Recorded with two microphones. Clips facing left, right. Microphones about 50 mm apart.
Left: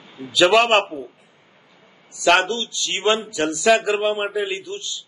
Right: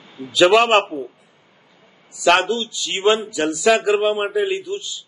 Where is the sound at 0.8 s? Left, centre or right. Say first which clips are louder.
Right 3 dB; right.